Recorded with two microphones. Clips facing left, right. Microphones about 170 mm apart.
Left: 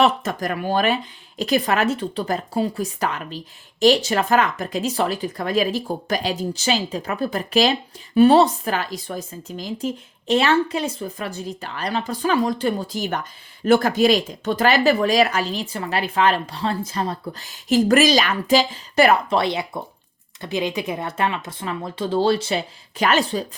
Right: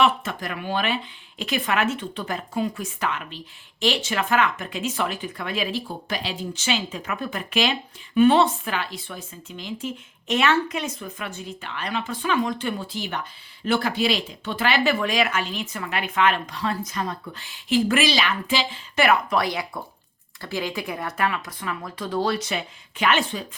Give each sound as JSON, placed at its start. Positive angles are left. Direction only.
{"t": 0.0, "sound": "a woman's voice", "side_deg": 40}